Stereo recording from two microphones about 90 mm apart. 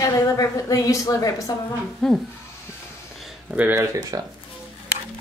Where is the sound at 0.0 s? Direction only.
40° left (ahead or behind).